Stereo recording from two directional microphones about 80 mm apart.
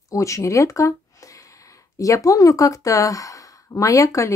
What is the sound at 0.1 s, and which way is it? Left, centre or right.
Speech, left.